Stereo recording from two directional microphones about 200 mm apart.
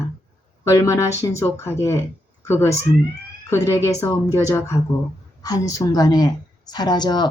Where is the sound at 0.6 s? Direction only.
15° left (ahead or behind).